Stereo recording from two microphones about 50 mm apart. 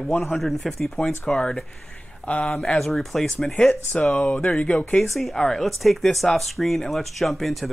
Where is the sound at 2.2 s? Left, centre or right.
Left.